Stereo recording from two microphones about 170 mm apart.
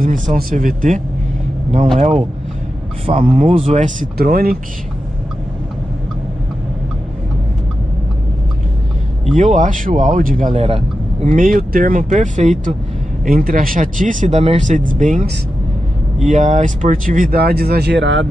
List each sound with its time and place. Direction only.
0.0 s speech: 50° right (ahead or behind)
4.2 s speech: 65° right (ahead or behind)
9.4 s speech: 45° right (ahead or behind)
11.2 s speech: 55° right (ahead or behind)
13.2 s speech: 55° right (ahead or behind); by 18.2 s 90° right